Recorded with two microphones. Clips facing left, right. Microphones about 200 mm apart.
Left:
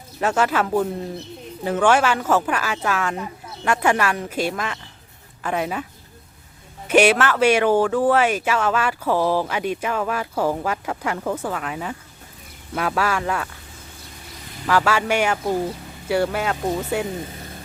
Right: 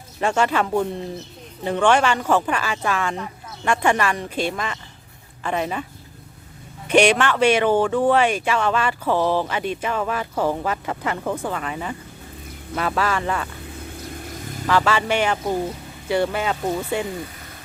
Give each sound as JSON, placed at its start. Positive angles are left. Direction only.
{"t": 0.2, "sound": "a woman's voice", "side_deg": 5}
{"t": 6.8, "sound": "speech", "side_deg": 5}
{"t": 14.3, "sound": "vehicle", "side_deg": -50}
{"t": 14.7, "sound": "speech", "side_deg": 10}